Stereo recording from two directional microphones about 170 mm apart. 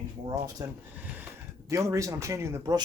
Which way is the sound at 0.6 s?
15° right (ahead or behind).